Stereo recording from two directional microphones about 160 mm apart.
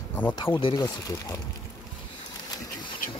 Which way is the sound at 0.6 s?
30° left (ahead or behind).